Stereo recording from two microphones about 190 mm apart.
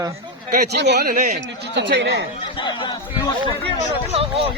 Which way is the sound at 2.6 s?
25° left (ahead or behind).